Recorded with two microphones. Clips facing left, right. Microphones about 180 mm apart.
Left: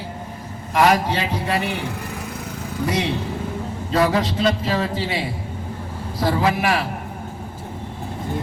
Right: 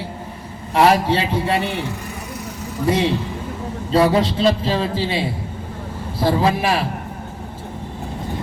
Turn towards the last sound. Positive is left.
turn(degrees=-30)  # may be behind; listen again after turning